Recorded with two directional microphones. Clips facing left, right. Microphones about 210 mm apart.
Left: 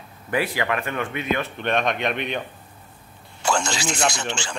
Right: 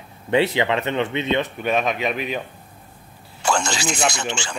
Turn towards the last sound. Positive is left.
turn(degrees=-5)  # may be behind; listen again after turning